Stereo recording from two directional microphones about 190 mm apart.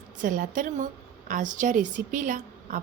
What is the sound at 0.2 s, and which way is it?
A woman's voice, 45° right (ahead or behind).